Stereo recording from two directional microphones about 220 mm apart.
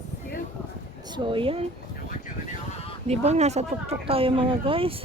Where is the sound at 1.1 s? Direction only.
20° right (ahead or behind).